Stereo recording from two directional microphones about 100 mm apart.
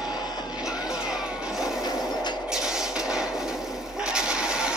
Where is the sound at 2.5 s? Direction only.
5° right (ahead or behind).